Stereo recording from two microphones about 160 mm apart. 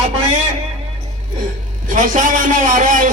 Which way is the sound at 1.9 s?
55° right (ahead or behind).